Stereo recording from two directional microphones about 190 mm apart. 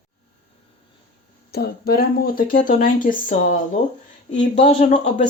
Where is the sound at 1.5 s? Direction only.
55° left (ahead or behind).